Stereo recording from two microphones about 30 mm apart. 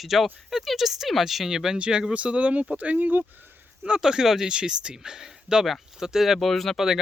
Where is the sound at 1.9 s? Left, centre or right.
Right.